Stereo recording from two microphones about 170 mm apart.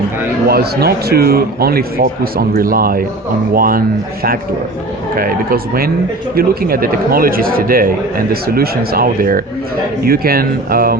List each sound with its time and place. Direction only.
0.4 s a man's voice: 65° right (ahead or behind)